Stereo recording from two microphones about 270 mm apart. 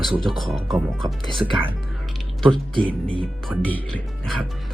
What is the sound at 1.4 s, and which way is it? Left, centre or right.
Speech, centre.